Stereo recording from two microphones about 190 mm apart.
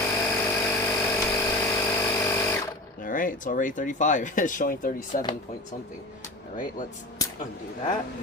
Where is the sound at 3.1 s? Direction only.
45° left (ahead or behind).